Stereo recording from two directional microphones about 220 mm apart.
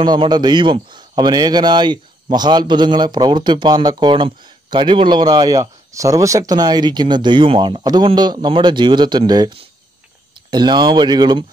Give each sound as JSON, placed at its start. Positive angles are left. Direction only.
{"t": 0.0, "sound": "speech", "side_deg": -20}